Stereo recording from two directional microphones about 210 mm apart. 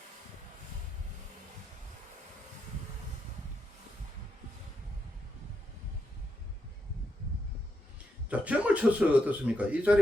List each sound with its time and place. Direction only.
8.3 s speech: 5° right (ahead or behind)